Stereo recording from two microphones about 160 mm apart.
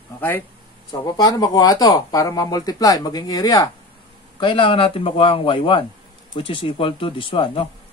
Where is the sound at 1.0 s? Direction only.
25° left (ahead or behind).